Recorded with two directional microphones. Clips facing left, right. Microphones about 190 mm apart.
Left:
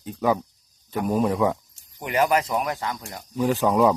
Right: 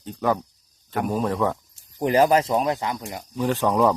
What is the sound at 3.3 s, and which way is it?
Speech, 10° left (ahead or behind).